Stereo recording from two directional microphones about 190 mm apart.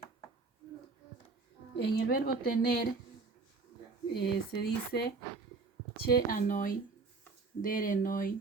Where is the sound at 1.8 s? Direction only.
60° left (ahead or behind).